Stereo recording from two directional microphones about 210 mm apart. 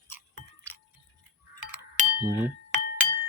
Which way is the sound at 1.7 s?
10° right (ahead or behind).